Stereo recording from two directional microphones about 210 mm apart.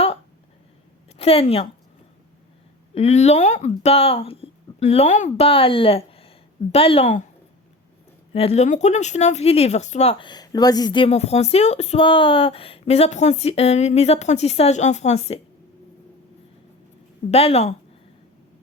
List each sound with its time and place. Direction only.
1.2 s speech: 30° left (ahead or behind)
2.9 s speech: 30° left (ahead or behind)
8.3 s speech: 30° left (ahead or behind)
17.3 s speech: 30° left (ahead or behind)